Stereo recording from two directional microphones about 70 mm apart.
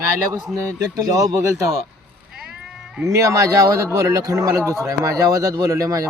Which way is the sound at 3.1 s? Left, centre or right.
Right.